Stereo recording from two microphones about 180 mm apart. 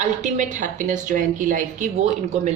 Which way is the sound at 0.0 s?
40° right (ahead or behind).